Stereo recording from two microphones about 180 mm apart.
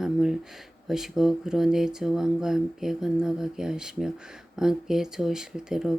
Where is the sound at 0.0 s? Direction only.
Centre (ahead or behind).